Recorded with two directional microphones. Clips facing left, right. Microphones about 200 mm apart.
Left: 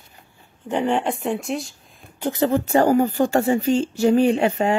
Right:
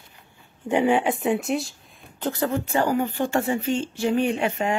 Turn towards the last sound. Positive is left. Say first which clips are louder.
# left 5 dB
turn(degrees=35)  # may be behind; listen again after turning